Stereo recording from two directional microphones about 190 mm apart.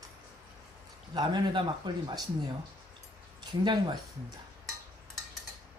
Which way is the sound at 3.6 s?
20° right (ahead or behind).